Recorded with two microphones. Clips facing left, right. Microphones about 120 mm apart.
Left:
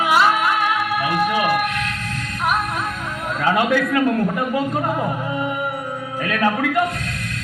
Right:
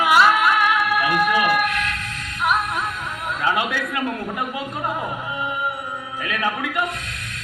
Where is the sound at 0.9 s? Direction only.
25° left (ahead or behind).